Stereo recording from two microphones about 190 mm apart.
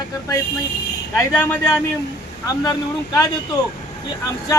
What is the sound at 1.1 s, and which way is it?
Speech, 15° left (ahead or behind).